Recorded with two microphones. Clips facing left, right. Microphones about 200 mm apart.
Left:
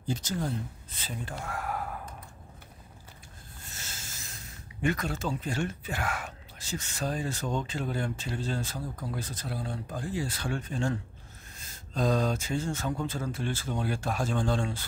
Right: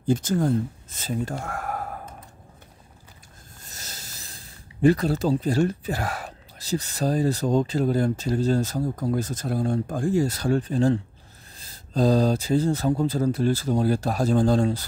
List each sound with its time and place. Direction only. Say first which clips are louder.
0.0 s speech: right 10 dB; 50° right (ahead or behind)
3.6 s speech: right 3 dB; 40° right (ahead or behind)